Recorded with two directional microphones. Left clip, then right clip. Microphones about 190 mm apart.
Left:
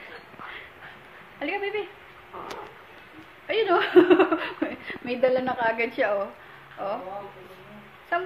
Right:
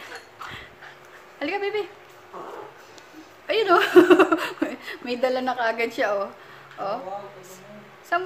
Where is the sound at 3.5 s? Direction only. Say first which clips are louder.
Right 3 dB; 25° right (ahead or behind).